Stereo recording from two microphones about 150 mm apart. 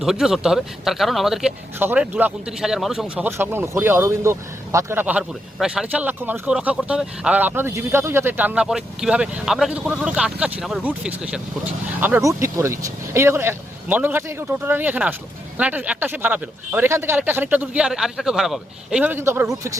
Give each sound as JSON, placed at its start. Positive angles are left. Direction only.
{"t": 0.0, "sound": "speech", "side_deg": -5}
{"t": 3.2, "sound": "speech", "side_deg": -15}